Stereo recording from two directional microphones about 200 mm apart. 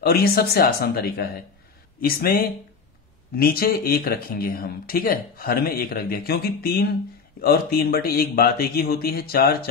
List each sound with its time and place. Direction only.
0.0 s speech: 50° left (ahead or behind)